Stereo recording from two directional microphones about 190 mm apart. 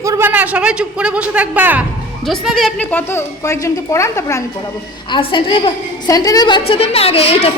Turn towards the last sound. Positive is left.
turn(degrees=30)  # may be behind; listen again after turning